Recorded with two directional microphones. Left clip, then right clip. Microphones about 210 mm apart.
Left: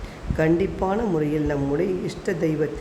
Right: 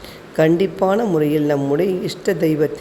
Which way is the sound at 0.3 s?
25° right (ahead or behind).